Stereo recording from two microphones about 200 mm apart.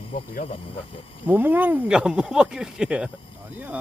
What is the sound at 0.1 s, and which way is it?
Speech, 40° left (ahead or behind).